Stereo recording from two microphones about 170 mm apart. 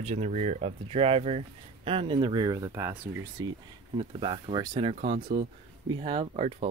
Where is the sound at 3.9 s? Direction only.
30° right (ahead or behind).